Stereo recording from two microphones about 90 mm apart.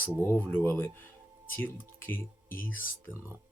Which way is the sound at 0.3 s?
20° left (ahead or behind).